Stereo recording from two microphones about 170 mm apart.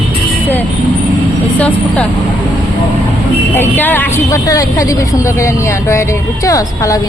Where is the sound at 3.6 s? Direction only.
10° left (ahead or behind).